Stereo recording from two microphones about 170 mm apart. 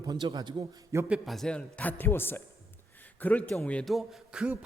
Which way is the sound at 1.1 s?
Centre (ahead or behind).